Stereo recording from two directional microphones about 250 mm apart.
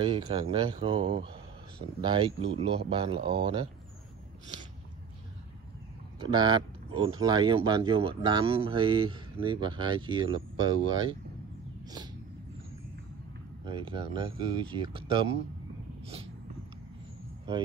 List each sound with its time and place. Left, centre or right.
0.0 s speech: right
6.2 s speech: centre
11.8 s vehicle: centre
13.7 s speech: right